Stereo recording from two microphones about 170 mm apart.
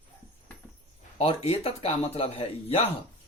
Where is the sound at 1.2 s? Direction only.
35° left (ahead or behind).